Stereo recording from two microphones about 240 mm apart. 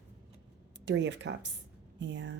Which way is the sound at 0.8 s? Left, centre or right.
Right.